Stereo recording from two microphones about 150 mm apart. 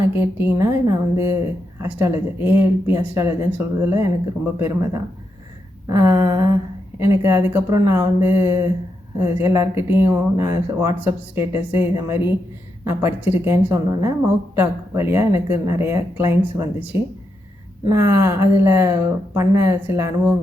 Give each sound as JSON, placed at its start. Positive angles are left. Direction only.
{"t": 0.0, "sound": "a woman's voice", "side_deg": -15}
{"t": 4.6, "sound": "a sound", "side_deg": -20}
{"t": 7.0, "sound": "a woman's voice", "side_deg": -15}